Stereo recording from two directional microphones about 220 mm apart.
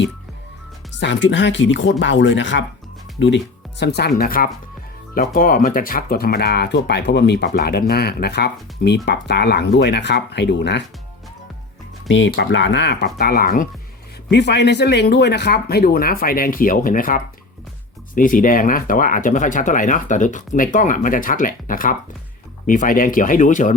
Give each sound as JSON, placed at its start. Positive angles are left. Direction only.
{"t": 0.9, "sound": "speech", "side_deg": 55}
{"t": 12.0, "sound": "speech", "side_deg": 55}